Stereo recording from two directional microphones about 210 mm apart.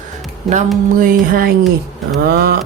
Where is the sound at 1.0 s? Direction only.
45° right (ahead or behind).